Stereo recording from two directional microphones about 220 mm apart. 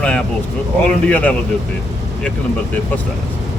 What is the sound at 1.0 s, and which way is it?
Speech, 5° left (ahead or behind).